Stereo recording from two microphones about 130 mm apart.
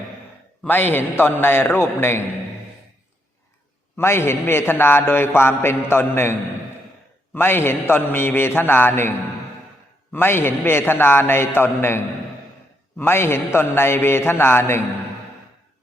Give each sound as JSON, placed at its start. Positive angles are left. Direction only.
{"t": 0.6, "sound": "a man's voice", "side_deg": 15}
{"t": 3.9, "sound": "a man's voice", "side_deg": 20}
{"t": 7.3, "sound": "a man's voice", "side_deg": 15}